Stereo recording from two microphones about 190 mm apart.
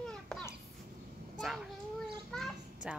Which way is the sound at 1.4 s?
Centre (ahead or behind).